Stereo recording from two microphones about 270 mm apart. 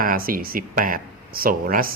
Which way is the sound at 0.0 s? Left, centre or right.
Right.